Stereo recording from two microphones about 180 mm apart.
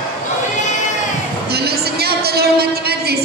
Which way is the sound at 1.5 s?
60° right (ahead or behind).